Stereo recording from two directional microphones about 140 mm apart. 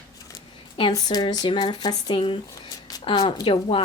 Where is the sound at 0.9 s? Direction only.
30° left (ahead or behind).